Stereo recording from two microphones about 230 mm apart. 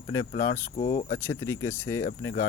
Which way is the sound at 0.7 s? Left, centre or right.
Left.